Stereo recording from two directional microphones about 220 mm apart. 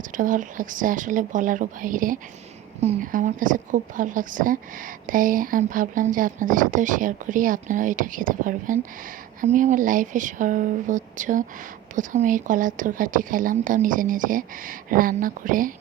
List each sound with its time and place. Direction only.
0.1 s a woman's voice: 35° right (ahead or behind)